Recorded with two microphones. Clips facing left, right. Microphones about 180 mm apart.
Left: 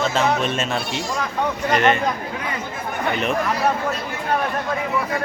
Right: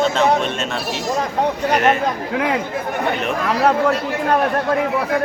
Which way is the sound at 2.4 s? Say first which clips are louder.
Right 9 dB; 85° right.